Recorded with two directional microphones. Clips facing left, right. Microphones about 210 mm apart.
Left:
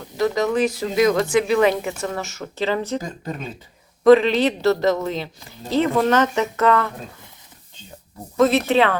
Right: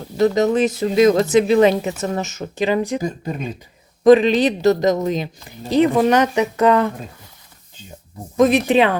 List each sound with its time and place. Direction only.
0.0 s speech: 25° right (ahead or behind)
8.4 s speech: 15° right (ahead or behind)